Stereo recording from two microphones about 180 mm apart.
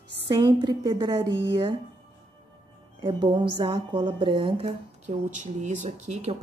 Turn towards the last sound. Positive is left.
turn(degrees=-35)  # may be behind; listen again after turning